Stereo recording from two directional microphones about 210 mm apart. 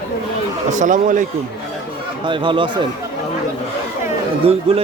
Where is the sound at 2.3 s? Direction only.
25° right (ahead or behind).